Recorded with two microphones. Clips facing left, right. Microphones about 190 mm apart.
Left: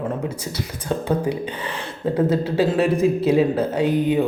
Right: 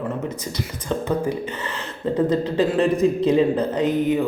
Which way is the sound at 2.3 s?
10° left (ahead or behind).